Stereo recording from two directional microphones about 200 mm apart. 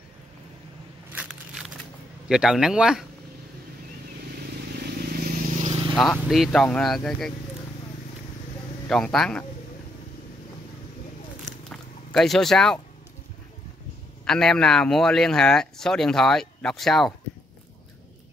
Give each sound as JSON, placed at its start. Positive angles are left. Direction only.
{"t": 1.1, "sound": "a sound", "side_deg": -10}
{"t": 2.2, "sound": "a man's voice", "side_deg": -5}
{"t": 5.7, "sound": "vehicle", "side_deg": -25}
{"t": 5.9, "sound": "a man's voice", "side_deg": 0}
{"t": 8.8, "sound": "a man's voice", "side_deg": 5}
{"t": 11.7, "sound": "a sound", "side_deg": 0}
{"t": 14.2, "sound": "a man's voice", "side_deg": 5}